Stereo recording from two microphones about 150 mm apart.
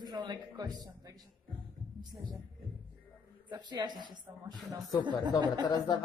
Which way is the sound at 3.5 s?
30° right (ahead or behind).